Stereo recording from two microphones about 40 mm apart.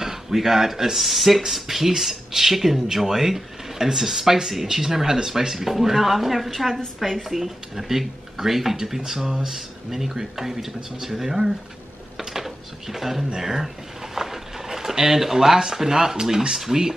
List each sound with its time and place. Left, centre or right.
0.0 s speech: centre
9.8 s speech: centre